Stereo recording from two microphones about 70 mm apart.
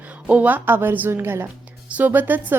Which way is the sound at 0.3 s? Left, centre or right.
Right.